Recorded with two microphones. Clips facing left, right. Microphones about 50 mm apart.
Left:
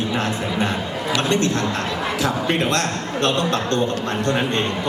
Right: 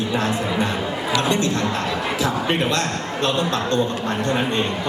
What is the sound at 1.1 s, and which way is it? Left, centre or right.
A man's voice, left.